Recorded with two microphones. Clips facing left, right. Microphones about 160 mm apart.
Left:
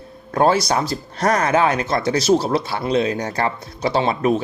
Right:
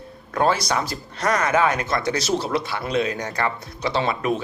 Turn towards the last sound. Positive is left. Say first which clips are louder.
# left 4 dB
turn(degrees=35)  # may be behind; listen again after turning